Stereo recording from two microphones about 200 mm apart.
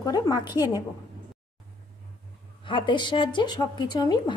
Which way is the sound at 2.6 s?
25° left (ahead or behind).